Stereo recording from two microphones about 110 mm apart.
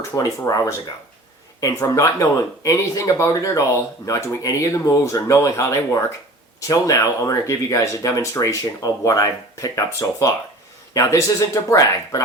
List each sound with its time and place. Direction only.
0.1 s speech: 30° left (ahead or behind)